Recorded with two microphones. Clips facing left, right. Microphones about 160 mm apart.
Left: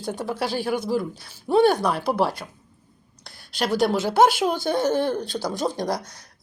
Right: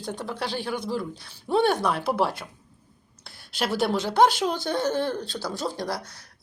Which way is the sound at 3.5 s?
5° right (ahead or behind).